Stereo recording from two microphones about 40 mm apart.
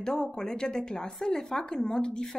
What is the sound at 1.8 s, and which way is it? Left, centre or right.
Speech, centre.